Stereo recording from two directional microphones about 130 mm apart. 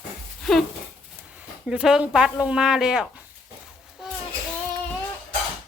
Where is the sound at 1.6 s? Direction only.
5° right (ahead or behind).